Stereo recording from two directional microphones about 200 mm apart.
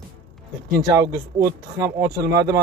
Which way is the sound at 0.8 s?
20° right (ahead or behind).